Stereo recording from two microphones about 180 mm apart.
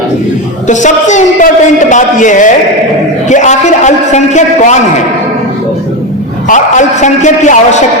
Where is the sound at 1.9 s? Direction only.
45° left (ahead or behind).